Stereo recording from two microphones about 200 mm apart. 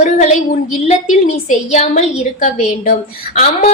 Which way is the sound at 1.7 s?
35° left (ahead or behind).